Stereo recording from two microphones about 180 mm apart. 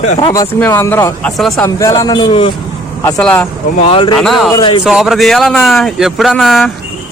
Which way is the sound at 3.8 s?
30° left (ahead or behind).